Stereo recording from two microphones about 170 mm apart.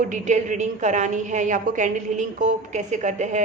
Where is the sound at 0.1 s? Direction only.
45° right (ahead or behind).